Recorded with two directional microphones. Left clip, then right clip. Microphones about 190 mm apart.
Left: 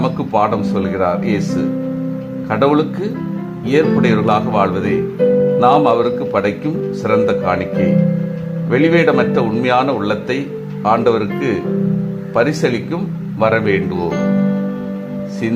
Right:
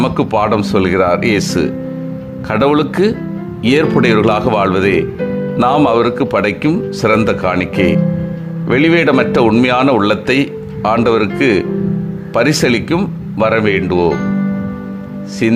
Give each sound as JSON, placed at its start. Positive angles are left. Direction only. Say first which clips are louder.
{"t": 0.0, "sound": "speech", "louder": "right 2 dB", "side_deg": -35}